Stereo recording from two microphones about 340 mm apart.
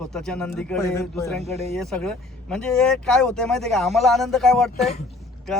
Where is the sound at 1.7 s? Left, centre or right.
Centre.